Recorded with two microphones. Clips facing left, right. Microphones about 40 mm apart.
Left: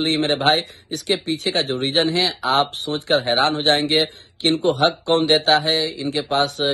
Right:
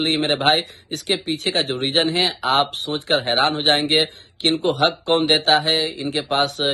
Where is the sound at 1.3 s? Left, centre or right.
Right.